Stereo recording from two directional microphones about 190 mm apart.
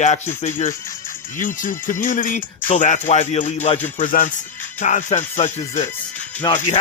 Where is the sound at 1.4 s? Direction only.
45° left (ahead or behind).